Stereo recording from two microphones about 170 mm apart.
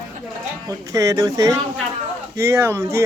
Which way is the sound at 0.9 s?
20° right (ahead or behind).